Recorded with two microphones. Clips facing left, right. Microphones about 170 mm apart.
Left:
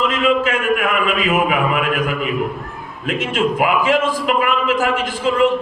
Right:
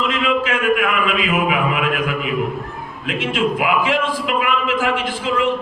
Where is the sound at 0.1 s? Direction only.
45° left (ahead or behind).